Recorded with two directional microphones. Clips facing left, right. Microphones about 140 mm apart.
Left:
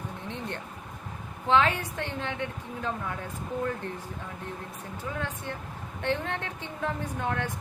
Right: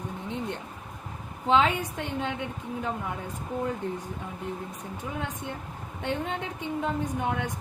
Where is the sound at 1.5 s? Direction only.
15° right (ahead or behind).